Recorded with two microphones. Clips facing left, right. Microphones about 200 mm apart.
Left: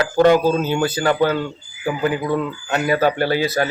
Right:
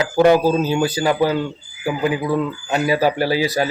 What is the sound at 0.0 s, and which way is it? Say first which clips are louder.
Speech: even; 10° right (ahead or behind).